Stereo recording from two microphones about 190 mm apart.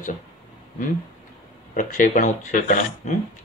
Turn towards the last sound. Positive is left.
turn(degrees=40)  # may be behind; listen again after turning